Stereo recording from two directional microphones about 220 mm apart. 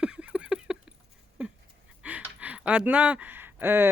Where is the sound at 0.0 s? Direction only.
5° right (ahead or behind).